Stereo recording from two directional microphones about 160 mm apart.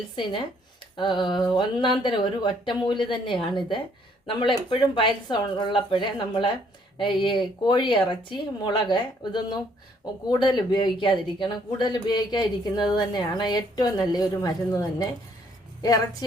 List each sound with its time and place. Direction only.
0.9 s speech: 30° left (ahead or behind)